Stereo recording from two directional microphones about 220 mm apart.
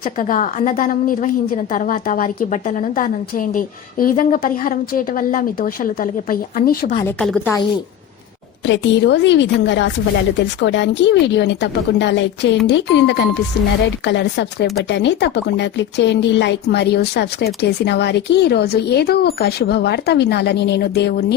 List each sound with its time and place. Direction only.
0.0 s a woman's voice: 35° left (ahead or behind)
7.0 s a woman's voice: 5° left (ahead or behind)
8.6 s speech: 55° left (ahead or behind)